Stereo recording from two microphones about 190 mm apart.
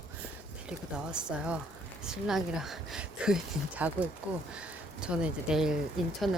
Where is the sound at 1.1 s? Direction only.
5° right (ahead or behind).